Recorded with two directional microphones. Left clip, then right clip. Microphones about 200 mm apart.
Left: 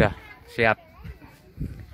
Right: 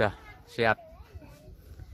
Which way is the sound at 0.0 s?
10° left (ahead or behind).